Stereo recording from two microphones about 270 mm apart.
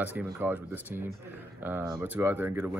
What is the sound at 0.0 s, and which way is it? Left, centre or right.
Speech, centre.